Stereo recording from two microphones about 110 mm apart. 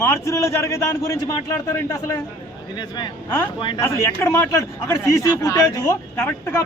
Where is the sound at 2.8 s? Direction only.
45° left (ahead or behind).